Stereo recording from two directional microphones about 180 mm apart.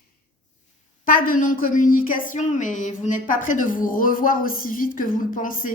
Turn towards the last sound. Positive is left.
turn(degrees=50)  # may be behind; listen again after turning